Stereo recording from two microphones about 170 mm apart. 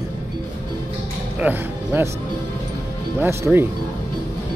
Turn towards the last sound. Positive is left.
turn(degrees=-15)  # may be behind; listen again after turning